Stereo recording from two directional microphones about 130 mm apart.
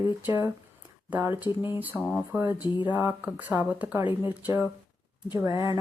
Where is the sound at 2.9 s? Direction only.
15° right (ahead or behind).